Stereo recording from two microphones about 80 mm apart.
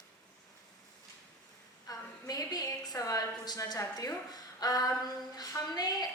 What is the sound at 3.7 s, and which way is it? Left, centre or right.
A woman's voice, left.